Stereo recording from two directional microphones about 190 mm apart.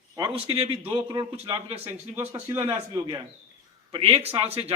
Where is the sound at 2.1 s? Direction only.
15° right (ahead or behind).